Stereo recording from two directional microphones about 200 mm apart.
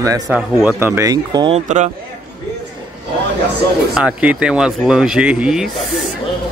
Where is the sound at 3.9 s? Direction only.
5° right (ahead or behind).